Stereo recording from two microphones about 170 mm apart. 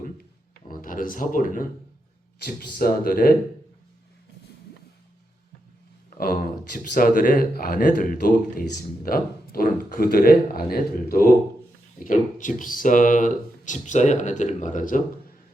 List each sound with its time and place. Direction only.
0.7 s speech: 55° left (ahead or behind)
2.7 s speech: 60° left (ahead or behind)
6.1 s speech: 55° left (ahead or behind)
12.0 s speech: 50° left (ahead or behind)